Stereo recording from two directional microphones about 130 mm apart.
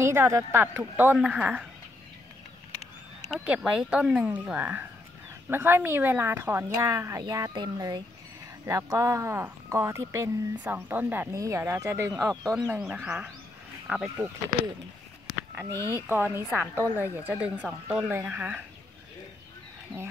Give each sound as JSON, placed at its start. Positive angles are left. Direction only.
{"t": 0.0, "sound": "speech", "side_deg": -20}
{"t": 3.3, "sound": "speech", "side_deg": -10}
{"t": 12.6, "sound": "speech", "side_deg": -10}
{"t": 14.5, "sound": "speech", "side_deg": 20}
{"t": 15.9, "sound": "speech", "side_deg": -15}